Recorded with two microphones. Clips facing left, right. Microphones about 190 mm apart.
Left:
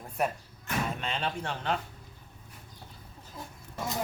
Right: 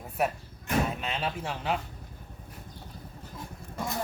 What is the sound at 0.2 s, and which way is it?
Speech, 5° right (ahead or behind).